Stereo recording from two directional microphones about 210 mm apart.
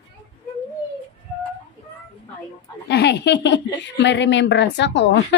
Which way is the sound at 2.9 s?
55° left (ahead or behind).